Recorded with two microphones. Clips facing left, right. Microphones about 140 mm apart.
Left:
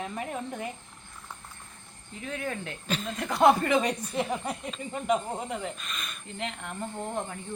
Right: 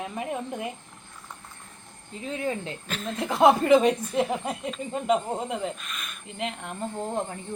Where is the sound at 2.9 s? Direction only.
Centre (ahead or behind).